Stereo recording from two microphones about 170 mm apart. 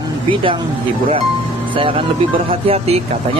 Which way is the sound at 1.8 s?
35° right (ahead or behind).